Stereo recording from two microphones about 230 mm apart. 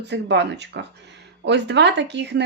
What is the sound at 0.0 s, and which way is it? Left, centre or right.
Speech, right.